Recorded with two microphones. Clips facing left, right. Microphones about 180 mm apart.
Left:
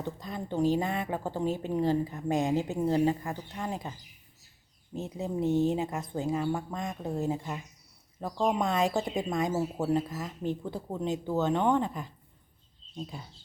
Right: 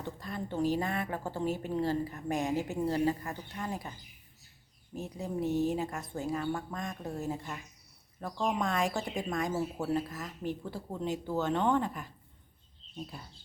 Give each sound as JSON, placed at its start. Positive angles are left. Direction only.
{"t": 0.0, "sound": "speech", "side_deg": 20}
{"t": 4.9, "sound": "speech", "side_deg": 20}